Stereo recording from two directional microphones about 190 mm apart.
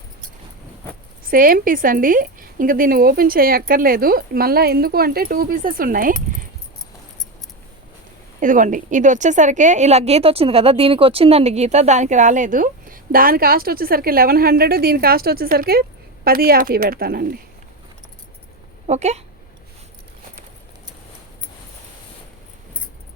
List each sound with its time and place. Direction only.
1.2 s a woman's voice: 50° right (ahead or behind)
8.4 s a woman's voice: 45° right (ahead or behind)
18.9 s speech: 35° right (ahead or behind)